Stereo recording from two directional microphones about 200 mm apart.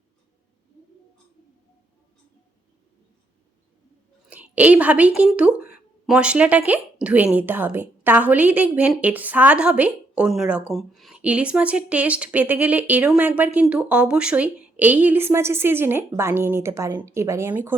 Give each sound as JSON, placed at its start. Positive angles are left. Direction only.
{"t": 4.3, "sound": "a woman's voice", "side_deg": -5}
{"t": 5.5, "sound": "speech", "side_deg": 45}
{"t": 6.1, "sound": "a woman's voice", "side_deg": -5}